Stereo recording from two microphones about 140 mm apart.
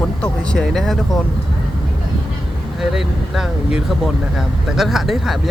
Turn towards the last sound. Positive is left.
turn(degrees=0)  # may be behind; listen again after turning